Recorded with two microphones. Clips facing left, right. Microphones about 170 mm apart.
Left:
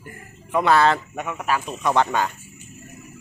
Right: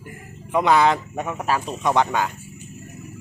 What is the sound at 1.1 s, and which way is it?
Speech, 30° right (ahead or behind).